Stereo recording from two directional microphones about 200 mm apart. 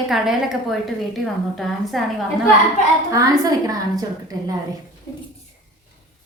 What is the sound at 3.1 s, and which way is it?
Speech, 20° right (ahead or behind).